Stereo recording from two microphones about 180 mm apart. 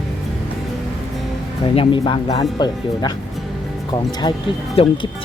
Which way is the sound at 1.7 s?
30° left (ahead or behind).